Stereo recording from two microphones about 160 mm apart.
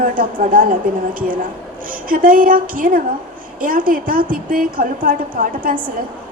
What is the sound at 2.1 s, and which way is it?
A woman's voice, 60° right (ahead or behind).